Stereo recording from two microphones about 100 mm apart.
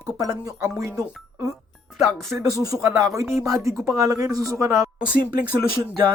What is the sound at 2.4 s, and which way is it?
Speech, 35° right (ahead or behind).